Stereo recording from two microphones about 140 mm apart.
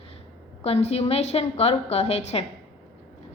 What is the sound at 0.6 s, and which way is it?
A woman's voice, 45° left (ahead or behind).